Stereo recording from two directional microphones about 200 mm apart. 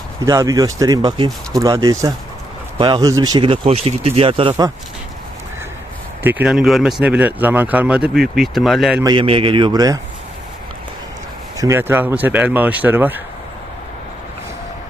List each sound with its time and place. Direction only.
0.3 s speech: 15° right (ahead or behind)
6.2 s speech: 5° right (ahead or behind)
9.0 s speech: 20° right (ahead or behind)
11.5 s speech: 15° right (ahead or behind)